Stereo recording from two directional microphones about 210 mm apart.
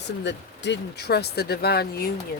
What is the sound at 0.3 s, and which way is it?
Speech, 55° left (ahead or behind).